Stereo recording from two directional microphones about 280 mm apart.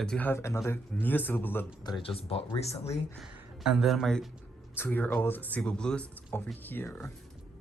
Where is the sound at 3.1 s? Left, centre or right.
Centre.